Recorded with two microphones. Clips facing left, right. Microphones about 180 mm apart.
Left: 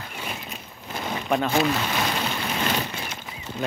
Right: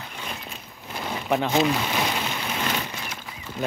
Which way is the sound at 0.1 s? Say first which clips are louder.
Left 3 dB; 10° left (ahead or behind).